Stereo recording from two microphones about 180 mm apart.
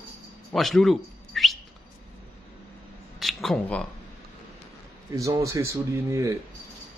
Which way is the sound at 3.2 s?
Centre (ahead or behind).